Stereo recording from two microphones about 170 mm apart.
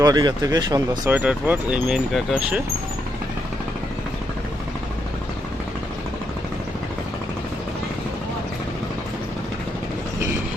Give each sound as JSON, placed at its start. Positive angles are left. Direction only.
{"t": 0.0, "sound": "speech", "side_deg": -25}
{"t": 1.1, "sound": "speech", "side_deg": -10}